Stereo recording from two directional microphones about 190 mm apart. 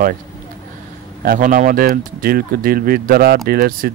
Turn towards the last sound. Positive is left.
turn(degrees=-50)  # may be behind; listen again after turning